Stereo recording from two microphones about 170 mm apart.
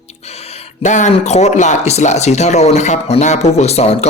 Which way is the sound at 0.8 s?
45° left (ahead or behind).